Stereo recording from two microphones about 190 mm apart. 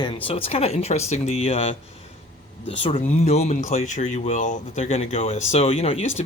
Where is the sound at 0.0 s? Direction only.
30° left (ahead or behind).